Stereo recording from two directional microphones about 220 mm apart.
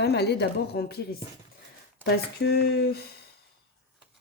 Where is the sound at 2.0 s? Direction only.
45° left (ahead or behind).